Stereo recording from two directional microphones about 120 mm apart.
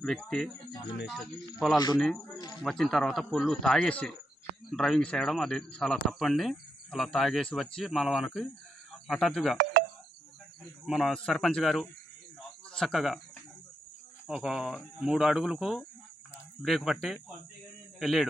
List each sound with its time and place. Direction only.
0.0 s speech: 5° left (ahead or behind)
2.3 s speech: 35° left (ahead or behind)
2.6 s speech: 5° left (ahead or behind)
10.9 s speech: centre (ahead or behind)
14.2 s a man's voice: 5° right (ahead or behind)